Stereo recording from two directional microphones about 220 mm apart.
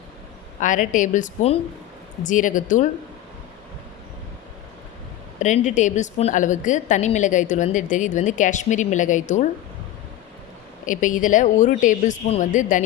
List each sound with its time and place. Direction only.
0.6 s a woman's voice: 35° left (ahead or behind)
5.4 s a woman's voice: 35° left (ahead or behind)
10.8 s a woman's voice: 35° left (ahead or behind)